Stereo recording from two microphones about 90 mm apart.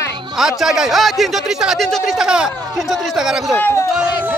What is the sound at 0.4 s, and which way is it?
Speech, 5° right (ahead or behind).